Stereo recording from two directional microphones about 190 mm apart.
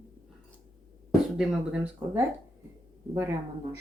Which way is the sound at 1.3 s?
5° right (ahead or behind).